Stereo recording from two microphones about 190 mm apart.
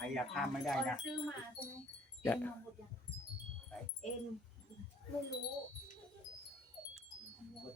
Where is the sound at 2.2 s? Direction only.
10° left (ahead or behind).